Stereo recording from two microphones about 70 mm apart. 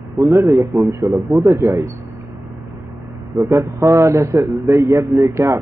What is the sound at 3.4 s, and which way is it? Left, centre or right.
A man's voice, right.